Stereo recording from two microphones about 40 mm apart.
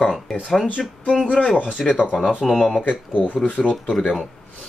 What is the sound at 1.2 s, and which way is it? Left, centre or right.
Speech, centre.